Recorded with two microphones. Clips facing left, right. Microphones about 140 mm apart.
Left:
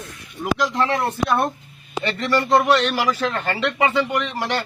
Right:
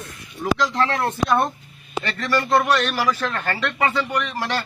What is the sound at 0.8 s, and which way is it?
Speech, 5° left (ahead or behind).